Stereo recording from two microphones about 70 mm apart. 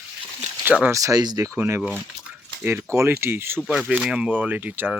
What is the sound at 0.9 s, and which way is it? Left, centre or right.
Speech, right.